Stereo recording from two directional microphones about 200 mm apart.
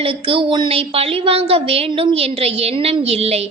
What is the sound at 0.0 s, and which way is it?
A woman's voice, 25° right (ahead or behind).